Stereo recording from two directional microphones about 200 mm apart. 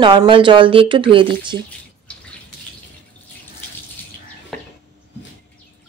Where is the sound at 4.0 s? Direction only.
10° left (ahead or behind).